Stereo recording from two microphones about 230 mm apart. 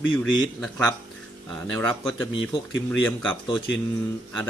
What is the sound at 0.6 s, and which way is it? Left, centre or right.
Speech, centre.